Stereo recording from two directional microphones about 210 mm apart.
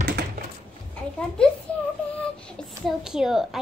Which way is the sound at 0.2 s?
50° right (ahead or behind).